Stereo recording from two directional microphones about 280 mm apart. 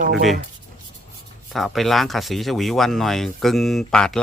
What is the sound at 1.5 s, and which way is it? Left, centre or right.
Speech, centre.